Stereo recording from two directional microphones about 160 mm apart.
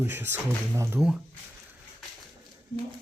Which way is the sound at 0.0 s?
15° right (ahead or behind).